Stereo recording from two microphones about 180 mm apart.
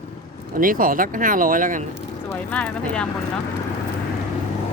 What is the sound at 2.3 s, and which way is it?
Speech, 10° left (ahead or behind).